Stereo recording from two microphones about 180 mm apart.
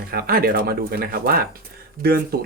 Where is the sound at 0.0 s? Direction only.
55° right (ahead or behind).